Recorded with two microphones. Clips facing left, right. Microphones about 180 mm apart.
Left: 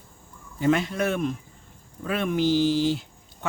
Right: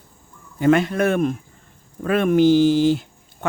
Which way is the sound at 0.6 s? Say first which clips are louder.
Right 6 dB; 55° right (ahead or behind).